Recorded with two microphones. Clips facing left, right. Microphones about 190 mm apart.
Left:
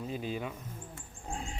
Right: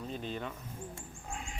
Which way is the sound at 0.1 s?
5° left (ahead or behind).